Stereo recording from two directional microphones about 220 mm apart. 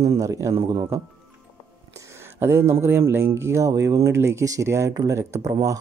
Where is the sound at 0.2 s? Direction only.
15° right (ahead or behind).